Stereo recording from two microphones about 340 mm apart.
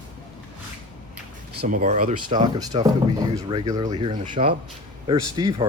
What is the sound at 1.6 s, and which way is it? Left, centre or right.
Speech, right.